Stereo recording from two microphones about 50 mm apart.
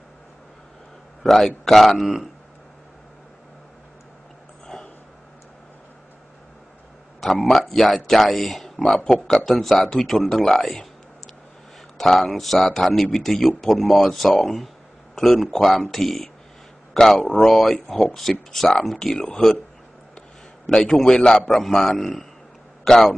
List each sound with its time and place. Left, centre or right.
1.2 s a man's voice: centre
7.2 s a sound: centre
7.5 s speech: centre
12.0 s speech: centre
20.6 s speech: centre